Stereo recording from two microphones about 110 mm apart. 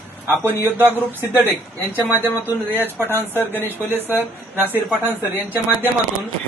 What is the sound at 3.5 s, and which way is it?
Speech, 20° left (ahead or behind).